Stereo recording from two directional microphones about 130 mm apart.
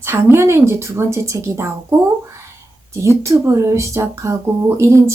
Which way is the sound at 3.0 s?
20° right (ahead or behind).